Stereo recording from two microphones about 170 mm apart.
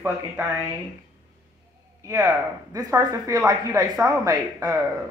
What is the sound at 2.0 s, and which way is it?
Speech, 15° right (ahead or behind).